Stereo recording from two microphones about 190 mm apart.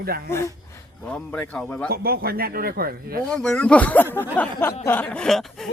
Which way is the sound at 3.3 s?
5° left (ahead or behind).